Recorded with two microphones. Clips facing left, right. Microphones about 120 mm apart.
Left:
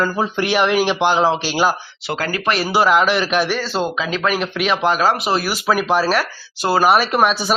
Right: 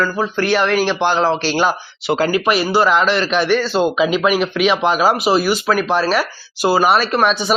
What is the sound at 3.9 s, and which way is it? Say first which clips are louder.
Speech: right 5 dB; 10° right (ahead or behind).